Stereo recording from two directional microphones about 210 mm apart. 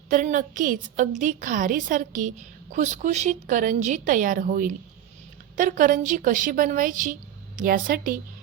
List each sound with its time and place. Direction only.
0.1 s a woman's voice: 40° right (ahead or behind)